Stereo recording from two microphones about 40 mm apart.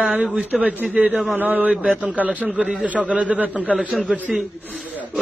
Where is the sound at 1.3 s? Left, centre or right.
Right.